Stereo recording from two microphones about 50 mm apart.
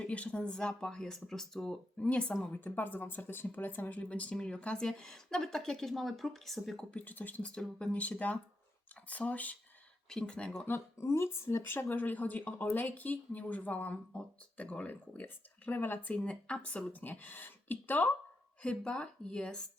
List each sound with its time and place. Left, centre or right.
0.0 s speech: left; by 2.0 s centre
2.0 s speech: left
2.5 s a woman's voice: left; by 6.8 s centre
6.9 s speech: left
10.1 s speech: centre
10.9 s speech: left
11.9 s speech: left
15.7 s speech: left
16.0 s speech: left
18.6 s speech: left